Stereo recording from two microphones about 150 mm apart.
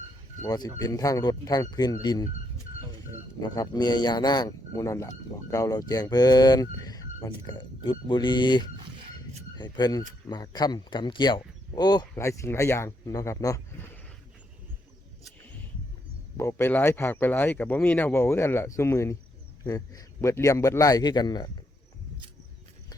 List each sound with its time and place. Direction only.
0.4 s speech: 25° left (ahead or behind)
3.4 s speech: 25° left (ahead or behind)
16.4 s speech: 15° left (ahead or behind)